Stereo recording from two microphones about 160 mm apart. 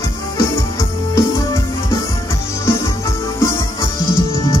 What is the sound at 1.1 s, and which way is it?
Music, 20° left (ahead or behind).